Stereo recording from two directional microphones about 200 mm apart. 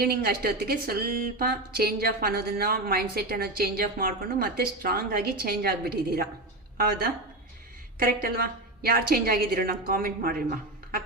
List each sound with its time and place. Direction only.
0.0 s speech: 50° right (ahead or behind)
7.9 s speech: 45° right (ahead or behind)